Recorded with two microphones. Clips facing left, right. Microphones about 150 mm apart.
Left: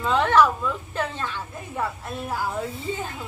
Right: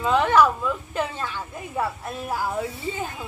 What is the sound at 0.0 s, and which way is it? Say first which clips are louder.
Speech: right 1 dB; 10° right (ahead or behind).